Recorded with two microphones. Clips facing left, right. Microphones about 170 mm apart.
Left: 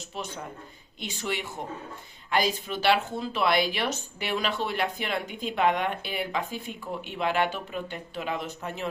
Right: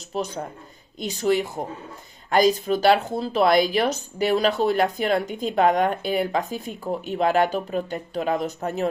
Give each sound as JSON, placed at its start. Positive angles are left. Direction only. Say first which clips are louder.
{"t": 0.1, "sound": "speech", "louder": "right 9 dB", "side_deg": -40}